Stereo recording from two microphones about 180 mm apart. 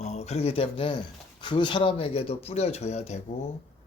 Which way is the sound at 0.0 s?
40° left (ahead or behind).